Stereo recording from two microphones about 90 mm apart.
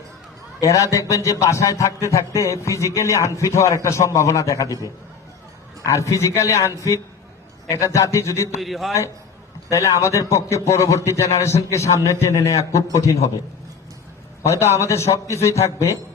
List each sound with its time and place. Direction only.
0.6 s a man's voice: 35° left (ahead or behind)
5.8 s a man's voice: 35° left (ahead or behind)
8.6 s a man's voice: centre (ahead or behind)
9.6 s a man's voice: 35° left (ahead or behind)
14.4 s a man's voice: 35° left (ahead or behind)